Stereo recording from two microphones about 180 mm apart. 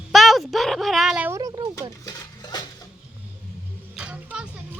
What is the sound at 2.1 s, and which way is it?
Dishes, 20° left (ahead or behind).